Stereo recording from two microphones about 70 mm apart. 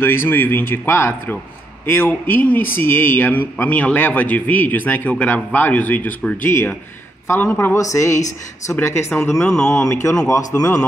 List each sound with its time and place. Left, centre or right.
0.0 s a man's voice: left
7.2 s speech: left
9.4 s speech: centre
10.0 s speech: left